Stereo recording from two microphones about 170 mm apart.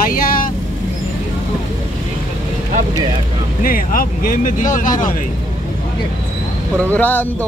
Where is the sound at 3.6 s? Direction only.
55° left (ahead or behind).